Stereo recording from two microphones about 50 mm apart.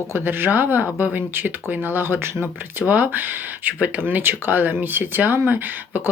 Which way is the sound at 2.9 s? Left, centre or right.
Right.